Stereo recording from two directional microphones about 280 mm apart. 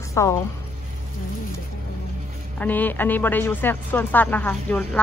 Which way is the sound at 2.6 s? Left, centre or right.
Centre.